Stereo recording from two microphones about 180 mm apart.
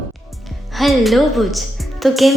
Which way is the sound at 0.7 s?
Centre (ahead or behind).